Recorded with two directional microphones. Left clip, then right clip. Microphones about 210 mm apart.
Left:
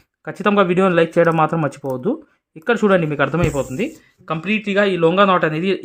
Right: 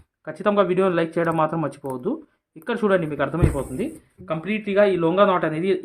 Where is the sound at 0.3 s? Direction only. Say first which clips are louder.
Left 4 dB; 35° left (ahead or behind).